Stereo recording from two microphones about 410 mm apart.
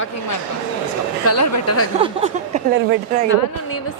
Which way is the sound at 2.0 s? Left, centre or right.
Centre.